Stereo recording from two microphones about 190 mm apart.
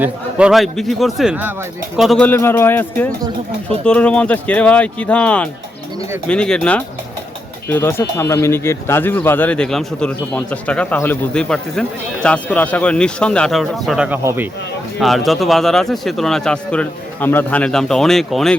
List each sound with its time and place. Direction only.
0.0 s a man's voice: 5° right (ahead or behind)